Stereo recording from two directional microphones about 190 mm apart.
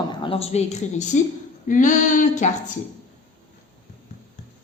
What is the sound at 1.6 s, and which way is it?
Female singing, 40° left (ahead or behind).